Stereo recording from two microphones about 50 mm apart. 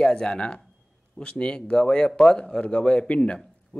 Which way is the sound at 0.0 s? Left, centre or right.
Centre.